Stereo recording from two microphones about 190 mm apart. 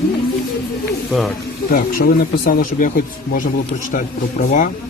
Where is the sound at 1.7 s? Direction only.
50° left (ahead or behind).